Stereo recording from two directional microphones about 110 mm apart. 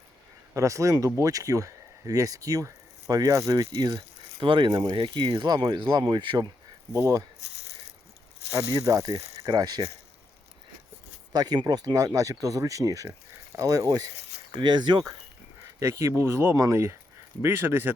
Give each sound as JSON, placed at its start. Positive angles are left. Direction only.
{"t": 0.5, "sound": "speech", "side_deg": -30}
{"t": 4.7, "sound": "speech", "side_deg": -30}
{"t": 4.9, "sound": "speech", "side_deg": -45}
{"t": 8.5, "sound": "speech", "side_deg": -30}
{"t": 11.3, "sound": "speech", "side_deg": -40}
{"t": 15.8, "sound": "speech", "side_deg": -25}